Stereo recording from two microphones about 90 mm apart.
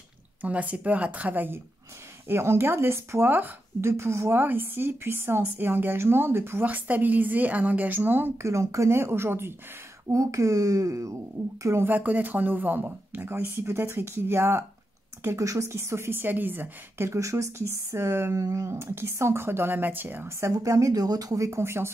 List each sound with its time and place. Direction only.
0.4 s speech: 15° right (ahead or behind)
15.2 s speech: 35° right (ahead or behind); by 17.1 s 20° right (ahead or behind)
17.1 s speech: 35° right (ahead or behind)